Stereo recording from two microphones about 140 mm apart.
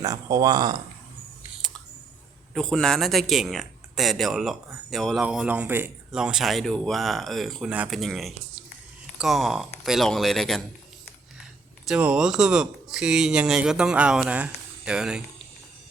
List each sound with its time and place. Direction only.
0.0 s speech: 25° right (ahead or behind)
2.6 s speech: 5° left (ahead or behind); by 5.9 s 15° right (ahead or behind)
6.1 s speech: 5° right (ahead or behind)
11.9 s speech: 5° right (ahead or behind)